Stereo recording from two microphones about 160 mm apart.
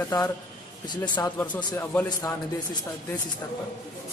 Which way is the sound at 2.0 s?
25° left (ahead or behind).